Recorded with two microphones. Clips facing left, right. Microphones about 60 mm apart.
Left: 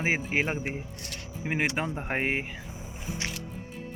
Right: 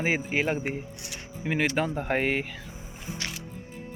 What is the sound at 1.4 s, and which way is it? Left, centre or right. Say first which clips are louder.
Speech: right 3 dB; centre.